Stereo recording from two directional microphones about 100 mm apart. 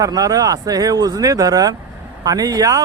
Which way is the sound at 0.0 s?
35° right (ahead or behind).